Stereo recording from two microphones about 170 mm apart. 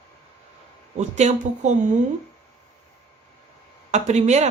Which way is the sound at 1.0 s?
45° right (ahead or behind).